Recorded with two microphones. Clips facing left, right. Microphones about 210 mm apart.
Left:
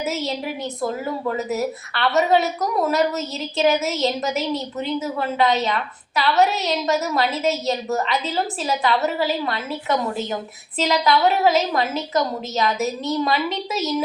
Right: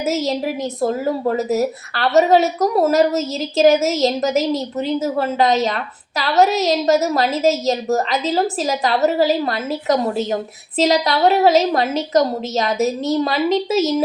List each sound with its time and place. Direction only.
0.0 s a woman's voice: 40° right (ahead or behind)